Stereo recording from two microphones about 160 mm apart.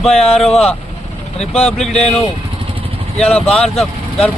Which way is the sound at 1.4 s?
40° left (ahead or behind).